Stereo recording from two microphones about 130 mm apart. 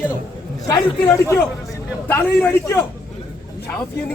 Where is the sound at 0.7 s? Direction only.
25° left (ahead or behind).